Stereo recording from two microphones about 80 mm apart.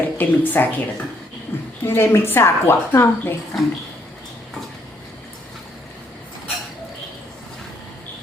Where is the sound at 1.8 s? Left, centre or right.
Left.